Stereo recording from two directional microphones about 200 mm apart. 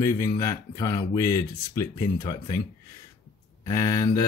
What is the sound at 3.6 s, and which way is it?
Speech, 20° left (ahead or behind).